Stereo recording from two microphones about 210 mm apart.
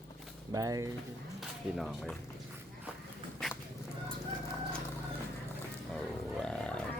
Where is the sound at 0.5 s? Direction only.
15° right (ahead or behind).